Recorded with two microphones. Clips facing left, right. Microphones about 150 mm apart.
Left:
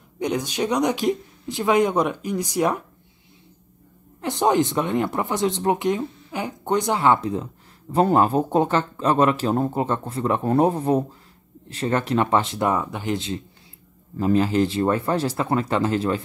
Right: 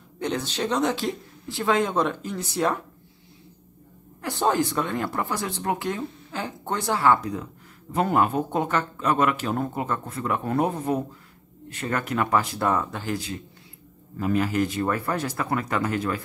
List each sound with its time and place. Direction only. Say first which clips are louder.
0.2 s speech: left 3 dB; 15° left (ahead or behind)
4.2 s speech: left 4 dB; 20° left (ahead or behind)